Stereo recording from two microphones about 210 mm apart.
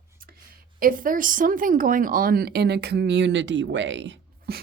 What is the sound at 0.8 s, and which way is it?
Speech, 40° right (ahead or behind).